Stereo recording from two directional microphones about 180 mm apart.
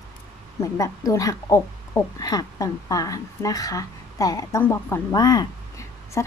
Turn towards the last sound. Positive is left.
turn(degrees=20)  # may be behind; listen again after turning